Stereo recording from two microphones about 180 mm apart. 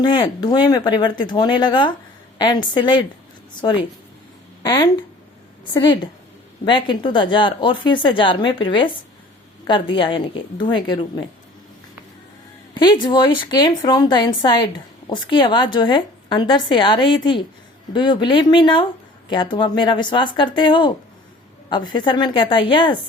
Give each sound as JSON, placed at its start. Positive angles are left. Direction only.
{"t": 0.0, "sound": "speech", "side_deg": 25}
{"t": 12.8, "sound": "speech", "side_deg": 25}